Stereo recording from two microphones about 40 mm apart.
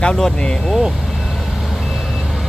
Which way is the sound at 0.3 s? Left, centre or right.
Centre.